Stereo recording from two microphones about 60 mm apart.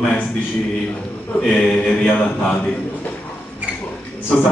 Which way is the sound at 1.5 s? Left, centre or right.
Centre.